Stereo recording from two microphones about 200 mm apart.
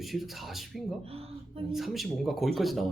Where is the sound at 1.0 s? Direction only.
30° right (ahead or behind).